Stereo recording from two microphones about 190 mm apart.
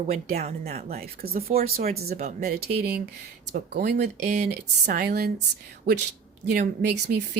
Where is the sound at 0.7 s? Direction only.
35° right (ahead or behind).